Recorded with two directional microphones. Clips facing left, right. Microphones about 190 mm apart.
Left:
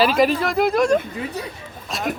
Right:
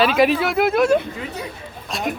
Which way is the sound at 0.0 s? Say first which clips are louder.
Right 1 dB; 5° right (ahead or behind).